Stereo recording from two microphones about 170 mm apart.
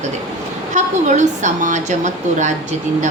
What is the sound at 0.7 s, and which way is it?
A woman's voice, 45° right (ahead or behind).